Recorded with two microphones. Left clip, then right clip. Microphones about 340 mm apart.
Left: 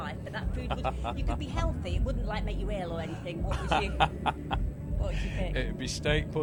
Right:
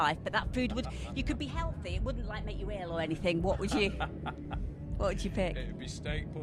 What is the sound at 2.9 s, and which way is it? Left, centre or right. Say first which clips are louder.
Speech: right 5 dB; right.